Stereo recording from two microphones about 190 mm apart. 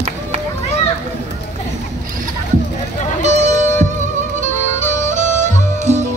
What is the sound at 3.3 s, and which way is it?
Music, 35° right (ahead or behind).